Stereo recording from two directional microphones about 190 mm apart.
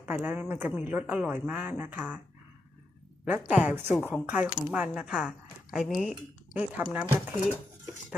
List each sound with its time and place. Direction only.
0.0 s speech: 10° right (ahead or behind)
3.2 s speech: 10° right (ahead or behind)